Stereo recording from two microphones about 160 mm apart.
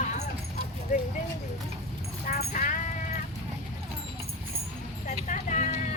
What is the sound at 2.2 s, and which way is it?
Clip-clop, 55° left (ahead or behind).